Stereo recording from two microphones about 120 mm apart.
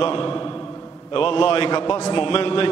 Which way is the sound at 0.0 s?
45° left (ahead or behind).